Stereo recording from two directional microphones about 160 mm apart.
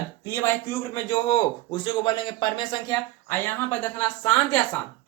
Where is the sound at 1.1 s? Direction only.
30° left (ahead or behind).